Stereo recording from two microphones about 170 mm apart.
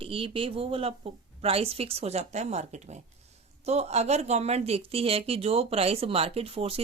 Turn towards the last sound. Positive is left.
turn(degrees=-35)  # may be behind; listen again after turning